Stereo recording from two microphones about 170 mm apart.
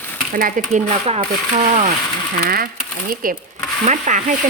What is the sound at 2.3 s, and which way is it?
Speech, 60° right (ahead or behind).